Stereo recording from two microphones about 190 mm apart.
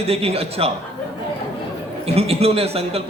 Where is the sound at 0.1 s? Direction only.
30° right (ahead or behind).